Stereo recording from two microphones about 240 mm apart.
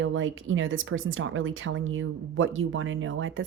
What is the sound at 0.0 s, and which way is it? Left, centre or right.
Speech, right.